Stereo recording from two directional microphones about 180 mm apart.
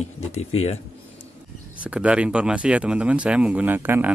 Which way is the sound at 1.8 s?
5° right (ahead or behind).